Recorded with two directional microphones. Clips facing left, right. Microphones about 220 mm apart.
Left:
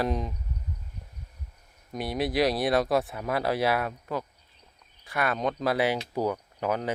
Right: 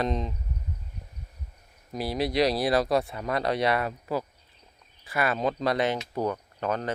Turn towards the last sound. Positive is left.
turn(degrees=10)  # may be behind; listen again after turning